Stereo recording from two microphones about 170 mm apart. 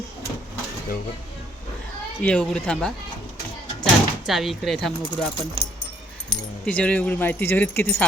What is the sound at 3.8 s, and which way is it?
Door, centre (ahead or behind).